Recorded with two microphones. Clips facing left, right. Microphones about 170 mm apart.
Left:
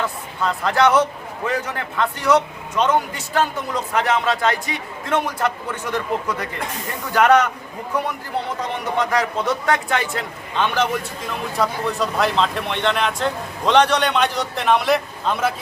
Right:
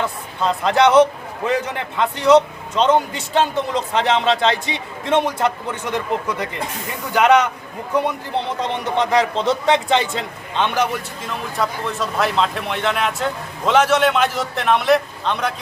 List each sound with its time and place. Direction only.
0.3 s a man's voice: 20° right (ahead or behind)
8.6 s a man's voice: 25° right (ahead or behind)
11.5 s a man's voice: centre (ahead or behind)